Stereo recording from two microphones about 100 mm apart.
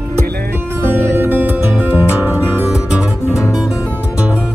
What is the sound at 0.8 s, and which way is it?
Music, 25° right (ahead or behind).